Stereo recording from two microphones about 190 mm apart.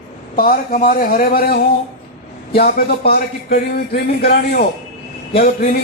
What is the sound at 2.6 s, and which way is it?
A man's voice, 55° left (ahead or behind).